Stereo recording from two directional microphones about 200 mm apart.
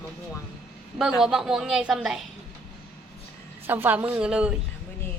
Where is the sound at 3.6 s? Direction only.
10° right (ahead or behind).